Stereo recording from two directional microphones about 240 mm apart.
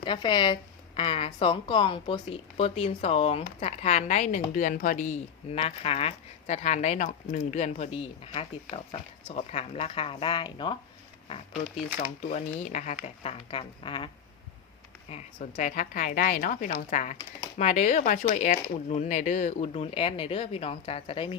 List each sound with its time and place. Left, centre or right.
0.0 s speech: centre
11.9 s speech: left
15.1 s a woman's voice: left